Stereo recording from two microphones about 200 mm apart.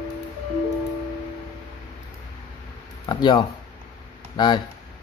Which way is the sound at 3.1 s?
20° left (ahead or behind).